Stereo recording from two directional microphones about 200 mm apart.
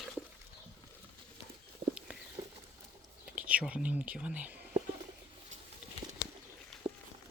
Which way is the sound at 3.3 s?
5° right (ahead or behind).